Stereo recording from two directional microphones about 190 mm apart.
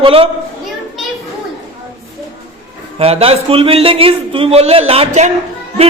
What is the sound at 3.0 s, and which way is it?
A man's voice, 30° right (ahead or behind).